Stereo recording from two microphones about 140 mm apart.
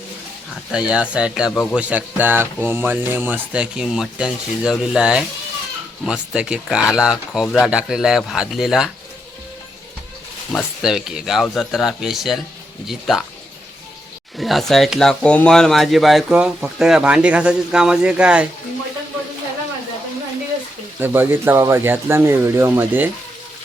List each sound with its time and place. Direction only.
0.7 s speech: 5° right (ahead or behind)
10.5 s speech: centre (ahead or behind)
14.3 s speech: centre (ahead or behind)
21.0 s speech: 15° right (ahead or behind)